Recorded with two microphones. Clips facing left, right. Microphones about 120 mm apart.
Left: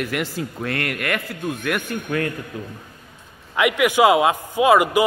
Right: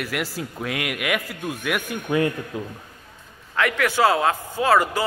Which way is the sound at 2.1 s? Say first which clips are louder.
Right 3 dB; 20° right (ahead or behind).